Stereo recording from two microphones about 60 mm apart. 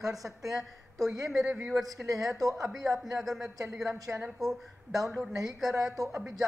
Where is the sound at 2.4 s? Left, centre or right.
Right.